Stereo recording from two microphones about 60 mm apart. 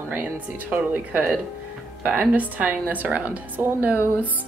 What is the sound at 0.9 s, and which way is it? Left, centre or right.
A woman's voice, right.